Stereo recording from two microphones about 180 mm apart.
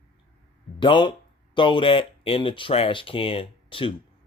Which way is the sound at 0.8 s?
25° left (ahead or behind).